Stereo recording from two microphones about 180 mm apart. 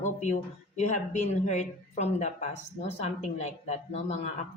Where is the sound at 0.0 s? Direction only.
40° left (ahead or behind).